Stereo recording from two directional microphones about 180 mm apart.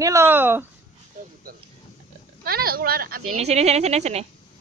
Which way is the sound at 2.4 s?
55° right (ahead or behind).